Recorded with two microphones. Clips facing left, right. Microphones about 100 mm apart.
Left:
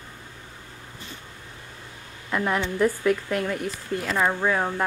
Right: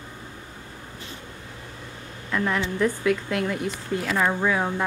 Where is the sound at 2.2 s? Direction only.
15° left (ahead or behind).